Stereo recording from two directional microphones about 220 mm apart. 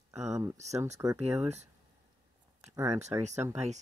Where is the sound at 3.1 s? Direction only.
20° right (ahead or behind).